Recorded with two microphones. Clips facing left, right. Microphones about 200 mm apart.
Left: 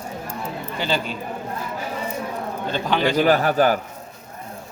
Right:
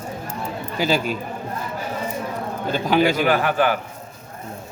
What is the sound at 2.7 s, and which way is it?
Speech, 10° right (ahead or behind).